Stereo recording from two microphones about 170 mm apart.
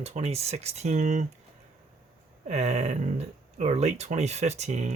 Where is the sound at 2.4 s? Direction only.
40° right (ahead or behind).